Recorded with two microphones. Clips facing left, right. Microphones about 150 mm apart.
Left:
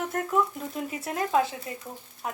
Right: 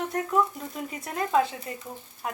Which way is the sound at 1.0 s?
5° left (ahead or behind).